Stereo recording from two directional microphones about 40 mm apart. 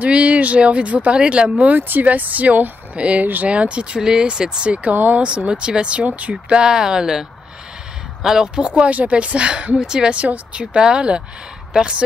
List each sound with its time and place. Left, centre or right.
0.0 s speech: right
1.1 s speech: right
1.8 s speech: right
3.0 s speech: right
4.9 s speech: right
5.5 s speech: right
6.0 s speech: right
6.3 s speech: right
8.5 s speech: right
10.1 s speech: right